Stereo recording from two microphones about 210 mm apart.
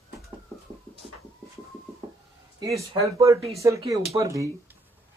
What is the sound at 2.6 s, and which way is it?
Speech, 15° right (ahead or behind).